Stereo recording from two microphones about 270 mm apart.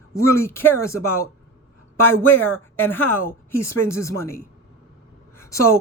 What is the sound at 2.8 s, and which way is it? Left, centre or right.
A woman's voice, centre.